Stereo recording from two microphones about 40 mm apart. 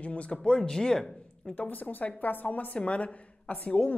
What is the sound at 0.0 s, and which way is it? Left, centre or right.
Speech, left.